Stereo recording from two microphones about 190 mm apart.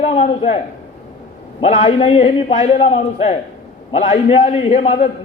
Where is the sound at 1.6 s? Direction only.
30° left (ahead or behind).